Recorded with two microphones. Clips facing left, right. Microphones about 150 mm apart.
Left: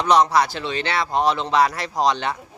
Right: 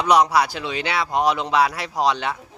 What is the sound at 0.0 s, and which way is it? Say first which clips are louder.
A man's voice: even; 10° right (ahead or behind).